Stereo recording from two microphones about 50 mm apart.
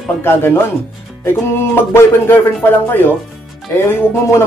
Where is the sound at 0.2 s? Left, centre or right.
Left.